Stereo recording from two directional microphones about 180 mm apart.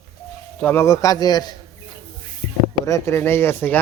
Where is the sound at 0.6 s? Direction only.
10° left (ahead or behind).